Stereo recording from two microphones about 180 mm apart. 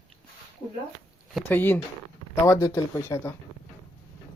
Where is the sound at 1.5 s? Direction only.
10° left (ahead or behind).